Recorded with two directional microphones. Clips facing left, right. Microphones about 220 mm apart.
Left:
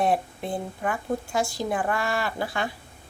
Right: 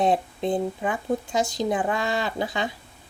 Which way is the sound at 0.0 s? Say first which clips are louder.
Right 2 dB; 20° right (ahead or behind).